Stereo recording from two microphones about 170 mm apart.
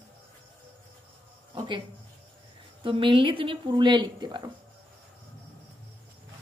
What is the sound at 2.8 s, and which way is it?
A woman's voice, 30° right (ahead or behind).